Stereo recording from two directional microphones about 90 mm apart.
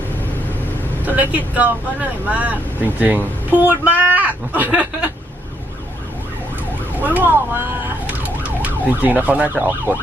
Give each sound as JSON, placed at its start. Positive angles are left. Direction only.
{"t": 1.0, "sound": "speech", "side_deg": -20}
{"t": 7.1, "sound": "speech", "side_deg": -20}
{"t": 8.0, "sound": "emergency vehicle", "side_deg": -15}